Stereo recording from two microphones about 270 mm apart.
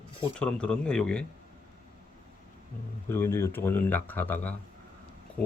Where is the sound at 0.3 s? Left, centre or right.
Centre.